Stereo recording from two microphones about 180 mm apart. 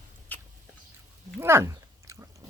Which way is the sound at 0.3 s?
10° left (ahead or behind).